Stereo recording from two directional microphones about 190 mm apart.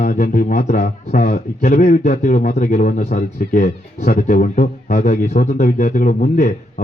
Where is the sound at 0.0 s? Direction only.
45° left (ahead or behind).